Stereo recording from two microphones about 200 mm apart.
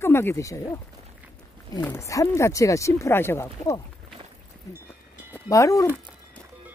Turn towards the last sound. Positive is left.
turn(degrees=15)  # may be behind; listen again after turning